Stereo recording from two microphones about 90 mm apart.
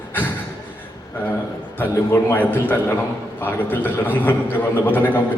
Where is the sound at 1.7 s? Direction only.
20° left (ahead or behind).